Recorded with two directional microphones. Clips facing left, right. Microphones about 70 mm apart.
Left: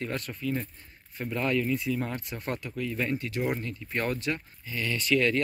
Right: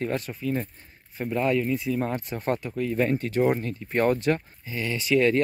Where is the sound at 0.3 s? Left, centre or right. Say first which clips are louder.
Right 3 dB; centre.